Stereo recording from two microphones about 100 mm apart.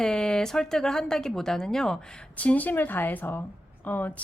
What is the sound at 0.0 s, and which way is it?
Speech, 5° left (ahead or behind).